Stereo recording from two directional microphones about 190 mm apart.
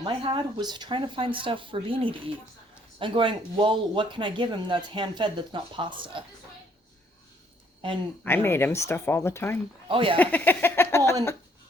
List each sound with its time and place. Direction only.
0.0 s speech: 25° right (ahead or behind)
8.2 s speech: 10° left (ahead or behind)
9.9 s speech: 30° right (ahead or behind)
10.2 s speech: 10° left (ahead or behind)